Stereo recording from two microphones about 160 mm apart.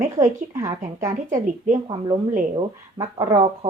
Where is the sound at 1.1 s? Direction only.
50° right (ahead or behind).